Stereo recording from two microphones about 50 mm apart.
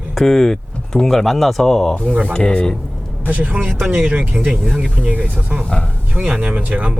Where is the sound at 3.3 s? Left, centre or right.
Right.